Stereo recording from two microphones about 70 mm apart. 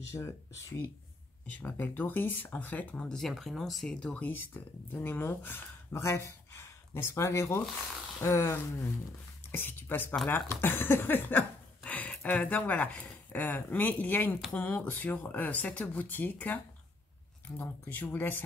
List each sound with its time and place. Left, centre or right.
0.0 s speech: left
1.5 s speech: left; by 3.9 s centre
4.2 s speech: left
5.9 s a woman's voice: left